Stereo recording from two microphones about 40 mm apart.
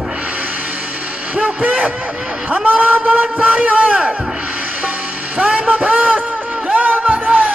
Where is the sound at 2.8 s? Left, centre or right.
Right.